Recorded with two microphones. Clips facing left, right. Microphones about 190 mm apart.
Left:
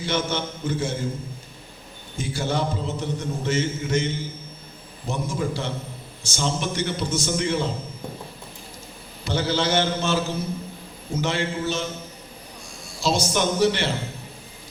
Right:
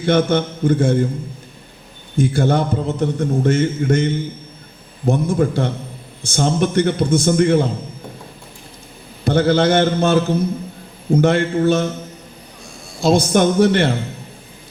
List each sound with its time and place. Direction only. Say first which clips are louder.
0.0 s a man's voice: right 10 dB; 55° right (ahead or behind)
2.1 s a man's voice: right 9 dB; 55° right (ahead or behind)
9.2 s a man's voice: right 9 dB; 55° right (ahead or behind)
13.0 s a man's voice: right 9 dB; 55° right (ahead or behind)